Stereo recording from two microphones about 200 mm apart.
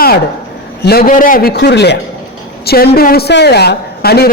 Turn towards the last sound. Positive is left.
turn(degrees=55)  # may be behind; listen again after turning